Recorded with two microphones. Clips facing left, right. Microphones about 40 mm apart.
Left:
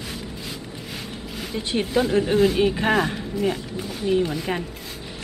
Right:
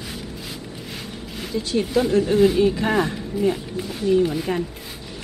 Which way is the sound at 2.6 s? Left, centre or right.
Left.